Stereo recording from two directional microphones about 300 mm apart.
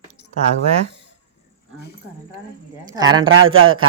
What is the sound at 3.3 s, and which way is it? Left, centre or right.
Speech, right.